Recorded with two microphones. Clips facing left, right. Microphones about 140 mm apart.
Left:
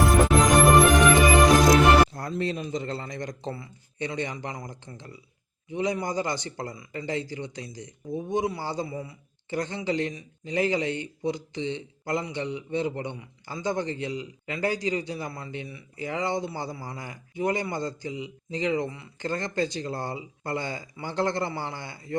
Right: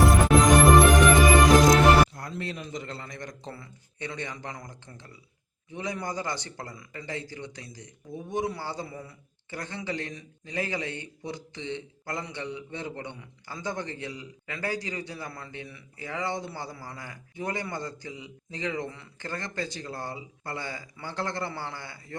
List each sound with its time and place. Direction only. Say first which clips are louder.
0.0 s music: even; centre (ahead or behind)
2.1 s music: left 6 dB; 35° left (ahead or behind)
2.5 s speech: left 6 dB; 25° left (ahead or behind)
3.2 s speech: left 6 dB; 20° left (ahead or behind)